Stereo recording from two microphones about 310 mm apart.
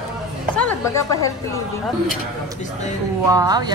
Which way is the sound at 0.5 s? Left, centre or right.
Centre.